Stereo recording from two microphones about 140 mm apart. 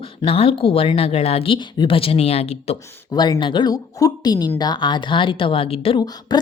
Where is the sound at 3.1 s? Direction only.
30° left (ahead or behind).